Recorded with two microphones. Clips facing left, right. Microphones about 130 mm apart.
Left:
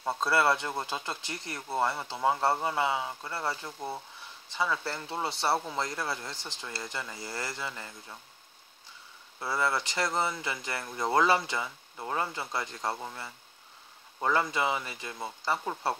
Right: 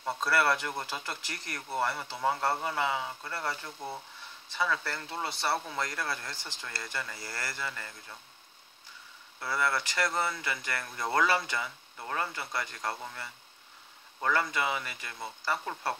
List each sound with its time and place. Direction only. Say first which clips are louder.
0.0 s speech: left 2 dB; 20° left (ahead or behind)
9.4 s speech: left 1 dB; 20° left (ahead or behind)